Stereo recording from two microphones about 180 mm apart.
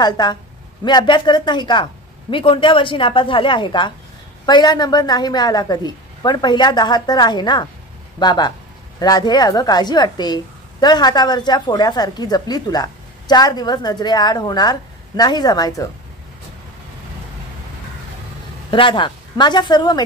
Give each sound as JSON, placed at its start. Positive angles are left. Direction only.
{"t": 0.0, "sound": "a woman's voice", "side_deg": 25}
{"t": 18.7, "sound": "a woman's voice", "side_deg": 25}